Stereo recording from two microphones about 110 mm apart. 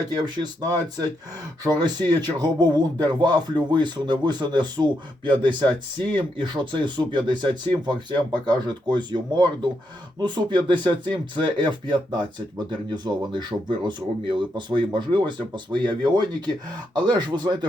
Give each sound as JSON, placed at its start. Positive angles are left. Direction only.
{"t": 1.6, "sound": "speech", "side_deg": -40}